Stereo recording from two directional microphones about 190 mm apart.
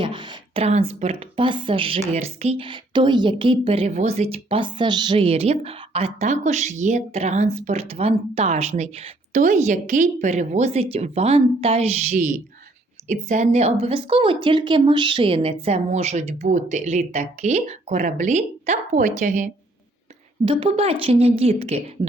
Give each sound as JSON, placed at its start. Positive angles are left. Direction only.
{"t": 0.0, "sound": "speech", "side_deg": -25}
{"t": 13.2, "sound": "speech", "side_deg": -35}
{"t": 20.4, "sound": "speech", "side_deg": -25}